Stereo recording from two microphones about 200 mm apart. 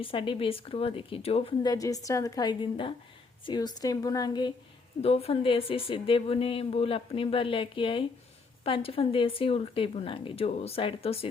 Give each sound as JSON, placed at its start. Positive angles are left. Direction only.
{"t": 0.0, "sound": "speech", "side_deg": 25}